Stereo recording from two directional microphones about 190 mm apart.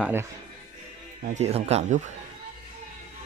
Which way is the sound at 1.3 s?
35° right (ahead or behind).